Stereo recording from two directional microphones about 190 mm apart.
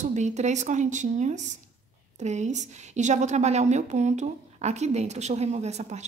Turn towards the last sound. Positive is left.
turn(degrees=-35)  # may be behind; listen again after turning